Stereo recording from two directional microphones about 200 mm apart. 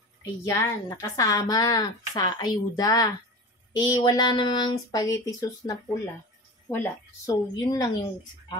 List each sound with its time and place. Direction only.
0.2 s a woman's voice: 15° left (ahead or behind)
7.7 s a woman's voice: 20° left (ahead or behind)